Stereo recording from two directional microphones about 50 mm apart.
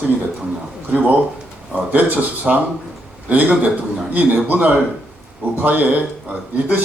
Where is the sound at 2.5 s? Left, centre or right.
Centre.